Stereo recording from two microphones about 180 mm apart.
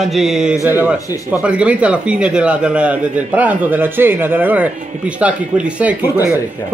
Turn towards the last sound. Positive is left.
turn(degrees=-10)  # may be behind; listen again after turning